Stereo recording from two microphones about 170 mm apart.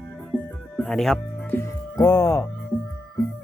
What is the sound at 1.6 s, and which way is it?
Music, 20° left (ahead or behind).